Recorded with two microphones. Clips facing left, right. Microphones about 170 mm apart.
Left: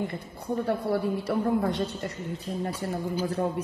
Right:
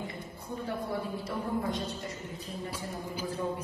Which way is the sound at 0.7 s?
70° left (ahead or behind).